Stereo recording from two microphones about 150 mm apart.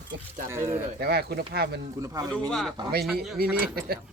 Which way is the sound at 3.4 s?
85° right.